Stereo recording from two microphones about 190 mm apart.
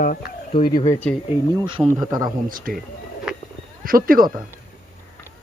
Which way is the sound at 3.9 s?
50° right (ahead or behind).